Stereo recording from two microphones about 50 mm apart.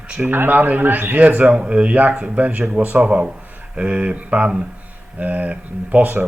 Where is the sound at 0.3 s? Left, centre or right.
Right.